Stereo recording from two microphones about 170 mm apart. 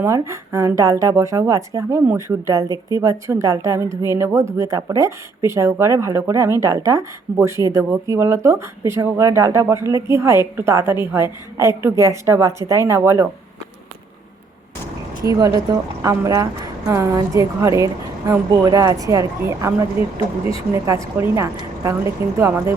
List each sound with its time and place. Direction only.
0.0 s a woman's voice: 15° right (ahead or behind)
15.2 s a woman's voice: 20° right (ahead or behind)